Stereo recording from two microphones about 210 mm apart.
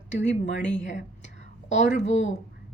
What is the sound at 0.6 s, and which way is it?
A woman's voice, 35° left (ahead or behind).